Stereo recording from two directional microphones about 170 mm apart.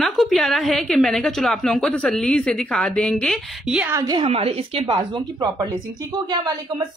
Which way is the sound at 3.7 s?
15° right (ahead or behind).